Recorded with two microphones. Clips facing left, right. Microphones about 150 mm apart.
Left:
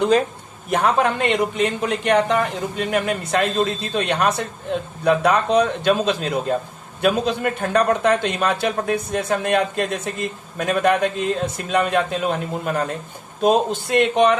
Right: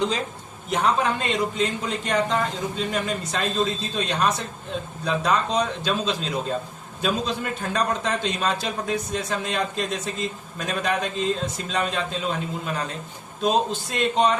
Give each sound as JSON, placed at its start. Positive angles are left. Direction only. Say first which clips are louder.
{"t": 0.7, "sound": "a man's voice", "louder": "left 4 dB", "side_deg": 60}